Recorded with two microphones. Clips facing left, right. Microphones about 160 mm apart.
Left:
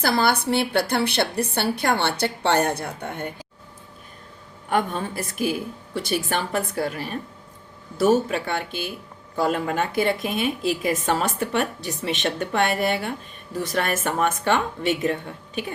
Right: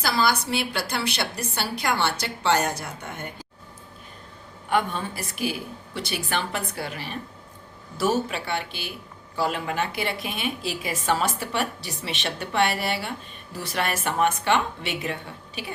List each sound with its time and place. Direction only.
0.0 s a woman's voice: 55° left (ahead or behind)
4.7 s a woman's voice: 45° left (ahead or behind)